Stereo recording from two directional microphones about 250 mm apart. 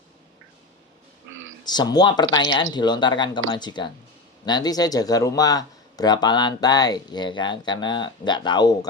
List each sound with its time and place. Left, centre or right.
1.6 s speech: centre